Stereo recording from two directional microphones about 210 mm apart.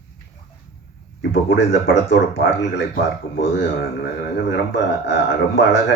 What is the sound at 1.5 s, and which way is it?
Speech, 60° left (ahead or behind).